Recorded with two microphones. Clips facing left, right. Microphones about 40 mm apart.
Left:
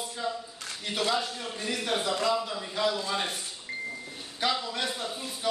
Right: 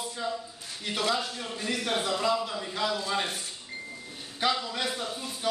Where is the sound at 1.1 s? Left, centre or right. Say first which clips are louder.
Left 1 dB; centre.